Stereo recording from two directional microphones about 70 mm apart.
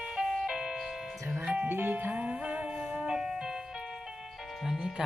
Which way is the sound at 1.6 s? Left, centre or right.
Right.